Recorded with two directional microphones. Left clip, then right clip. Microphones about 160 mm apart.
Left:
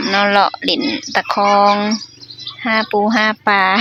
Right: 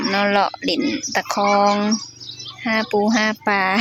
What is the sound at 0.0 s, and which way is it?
Speech, centre (ahead or behind).